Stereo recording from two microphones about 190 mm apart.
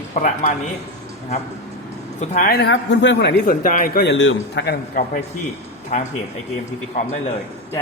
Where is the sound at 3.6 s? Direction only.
45° left (ahead or behind).